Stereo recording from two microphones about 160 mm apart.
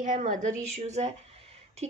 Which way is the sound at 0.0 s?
50° right (ahead or behind).